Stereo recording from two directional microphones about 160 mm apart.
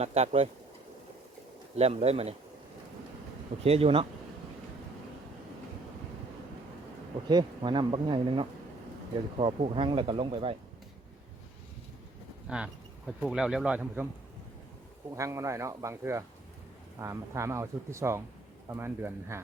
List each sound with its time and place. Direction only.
0.0 s speech: 40° right (ahead or behind)
1.7 s speech: 40° right (ahead or behind)
3.6 s speech: 35° right (ahead or behind)
7.3 s speech: 25° right (ahead or behind)
12.5 s speech: 5° right (ahead or behind)
15.1 s speech: 20° right (ahead or behind)